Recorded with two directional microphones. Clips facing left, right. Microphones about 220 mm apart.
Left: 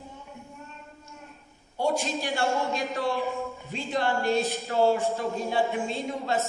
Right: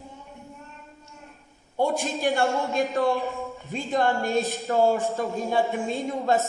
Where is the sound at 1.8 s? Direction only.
50° right (ahead or behind).